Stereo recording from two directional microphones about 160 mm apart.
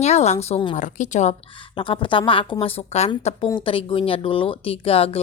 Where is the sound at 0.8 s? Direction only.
50° left (ahead or behind).